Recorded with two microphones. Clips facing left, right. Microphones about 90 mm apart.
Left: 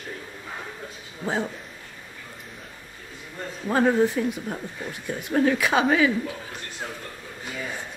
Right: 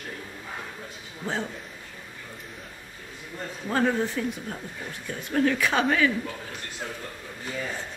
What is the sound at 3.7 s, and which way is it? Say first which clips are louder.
A woman's voice: left 5 dB; 15° left (ahead or behind).